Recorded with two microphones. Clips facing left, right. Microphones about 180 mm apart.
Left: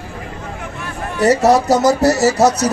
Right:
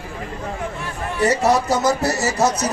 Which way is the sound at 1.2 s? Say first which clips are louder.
Left 5 dB; 40° left (ahead or behind).